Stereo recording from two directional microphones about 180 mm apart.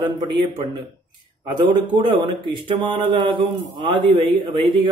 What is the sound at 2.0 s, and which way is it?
A man's voice, 25° right (ahead or behind).